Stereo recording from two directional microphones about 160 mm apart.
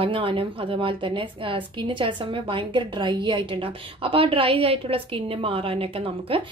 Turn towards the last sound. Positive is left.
turn(degrees=-35)  # may be behind; listen again after turning